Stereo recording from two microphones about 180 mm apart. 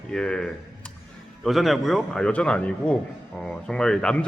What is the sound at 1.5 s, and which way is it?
A man's voice, centre (ahead or behind).